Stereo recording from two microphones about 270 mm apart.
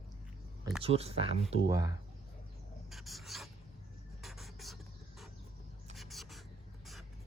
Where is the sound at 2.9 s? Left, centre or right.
Centre.